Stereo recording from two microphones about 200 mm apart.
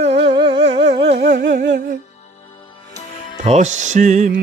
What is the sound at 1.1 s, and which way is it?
Music, 60° right (ahead or behind).